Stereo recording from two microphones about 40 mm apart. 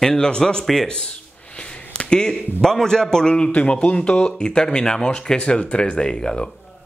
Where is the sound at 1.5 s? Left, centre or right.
Left.